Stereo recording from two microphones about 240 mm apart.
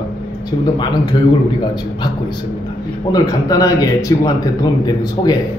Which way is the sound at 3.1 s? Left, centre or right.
Centre.